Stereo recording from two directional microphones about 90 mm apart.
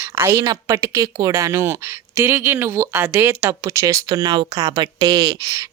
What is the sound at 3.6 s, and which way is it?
Speech, 35° right (ahead or behind).